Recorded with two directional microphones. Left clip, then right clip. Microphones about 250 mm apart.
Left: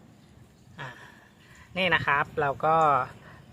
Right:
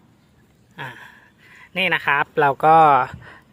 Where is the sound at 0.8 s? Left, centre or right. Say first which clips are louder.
Right 7 dB; right.